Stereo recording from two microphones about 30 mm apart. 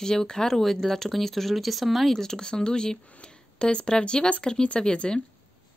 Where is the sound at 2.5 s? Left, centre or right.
Left.